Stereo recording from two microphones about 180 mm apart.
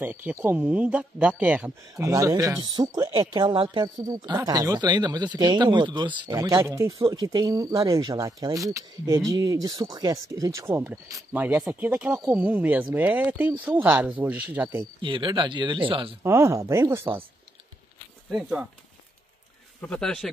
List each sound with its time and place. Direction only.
0.0 s speech: 10° right (ahead or behind)
2.0 s speech: 20° right (ahead or behind)
15.0 s speech: 25° right (ahead or behind)
16.2 s speech: 15° right (ahead or behind)
18.3 s speech: 5° right (ahead or behind)
19.8 s speech: 5° left (ahead or behind)